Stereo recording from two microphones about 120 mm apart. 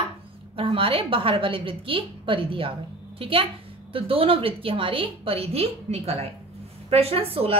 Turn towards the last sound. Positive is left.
turn(degrees=-50)  # may be behind; listen again after turning